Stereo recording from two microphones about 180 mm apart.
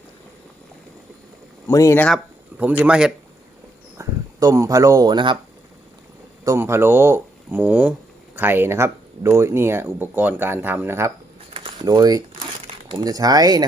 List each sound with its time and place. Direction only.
1.6 s speech: 15° left (ahead or behind)
2.6 s speech: 10° right (ahead or behind)
3.9 s speech: 20° right (ahead or behind)
6.4 s speech: 15° right (ahead or behind)
11.5 s a sound: 25° right (ahead or behind)
12.9 s speech: 20° right (ahead or behind)